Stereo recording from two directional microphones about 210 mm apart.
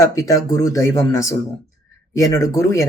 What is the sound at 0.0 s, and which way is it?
Speech, 15° left (ahead or behind).